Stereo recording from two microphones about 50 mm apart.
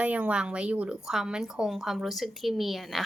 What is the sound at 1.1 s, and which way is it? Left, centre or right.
Speech, centre.